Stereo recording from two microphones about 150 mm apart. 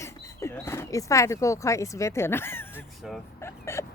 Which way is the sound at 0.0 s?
20° left (ahead or behind).